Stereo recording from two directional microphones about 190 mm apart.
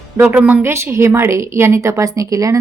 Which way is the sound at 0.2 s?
10° right (ahead or behind).